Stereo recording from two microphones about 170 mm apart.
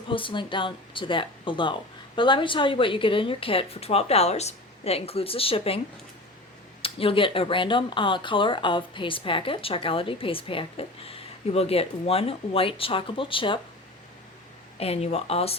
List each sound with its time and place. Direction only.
0.1 s speech: 30° left (ahead or behind)
6.8 s speech: 30° left (ahead or behind)
14.8 s speech: 35° left (ahead or behind)